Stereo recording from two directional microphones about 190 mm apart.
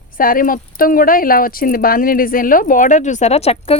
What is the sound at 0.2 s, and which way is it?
Speech, 45° left (ahead or behind).